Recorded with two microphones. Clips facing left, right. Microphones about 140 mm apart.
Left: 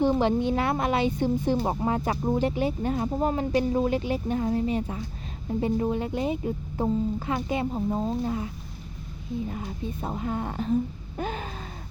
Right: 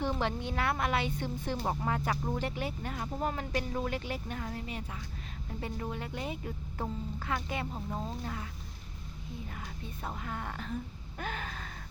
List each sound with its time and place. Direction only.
0.2 s speech: 20° left (ahead or behind)
9.5 s speech: 25° left (ahead or behind)